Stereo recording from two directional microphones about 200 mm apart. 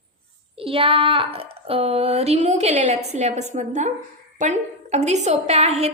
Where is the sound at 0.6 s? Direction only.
30° right (ahead or behind).